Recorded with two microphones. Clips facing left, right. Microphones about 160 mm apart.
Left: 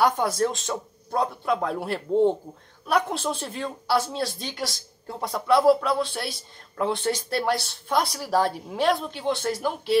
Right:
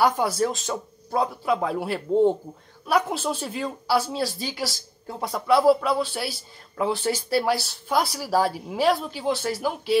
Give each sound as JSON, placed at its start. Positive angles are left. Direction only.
{"t": 0.0, "sound": "a woman's voice", "side_deg": 0}